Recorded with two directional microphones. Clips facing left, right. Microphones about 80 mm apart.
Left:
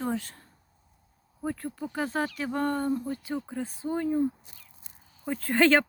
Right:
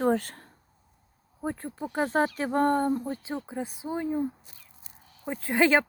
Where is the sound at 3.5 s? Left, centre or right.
Centre.